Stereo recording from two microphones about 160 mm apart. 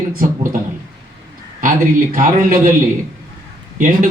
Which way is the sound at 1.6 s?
55° right (ahead or behind).